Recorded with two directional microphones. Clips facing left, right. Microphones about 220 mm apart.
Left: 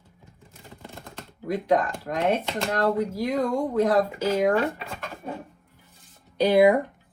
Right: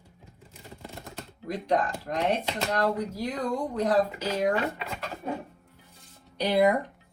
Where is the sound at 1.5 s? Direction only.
50° left (ahead or behind).